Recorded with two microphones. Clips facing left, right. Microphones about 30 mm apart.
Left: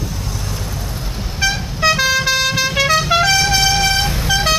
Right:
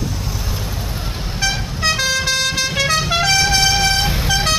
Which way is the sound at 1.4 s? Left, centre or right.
Centre.